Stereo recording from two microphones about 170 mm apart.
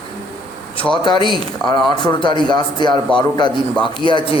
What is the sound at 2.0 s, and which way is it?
A man's voice, 25° left (ahead or behind).